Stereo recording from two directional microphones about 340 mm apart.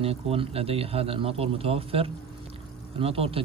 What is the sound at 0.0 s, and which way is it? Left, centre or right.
Speech, centre.